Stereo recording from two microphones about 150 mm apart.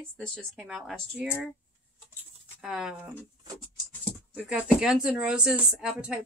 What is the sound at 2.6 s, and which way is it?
Speech, 5° right (ahead or behind).